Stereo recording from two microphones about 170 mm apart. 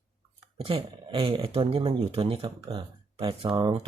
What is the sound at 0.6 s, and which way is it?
Speech, 35° right (ahead or behind).